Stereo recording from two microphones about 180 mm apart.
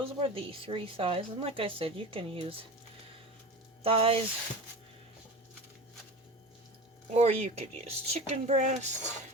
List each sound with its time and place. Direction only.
0.2 s a woman's voice: 30° right (ahead or behind)
3.8 s a woman's voice: 30° right (ahead or behind)
7.1 s a woman's voice: 35° right (ahead or behind)